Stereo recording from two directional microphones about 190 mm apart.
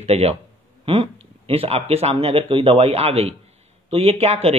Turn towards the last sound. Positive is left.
turn(degrees=-30)  # may be behind; listen again after turning